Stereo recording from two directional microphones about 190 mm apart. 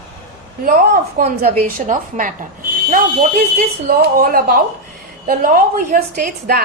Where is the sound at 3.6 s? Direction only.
55° right (ahead or behind).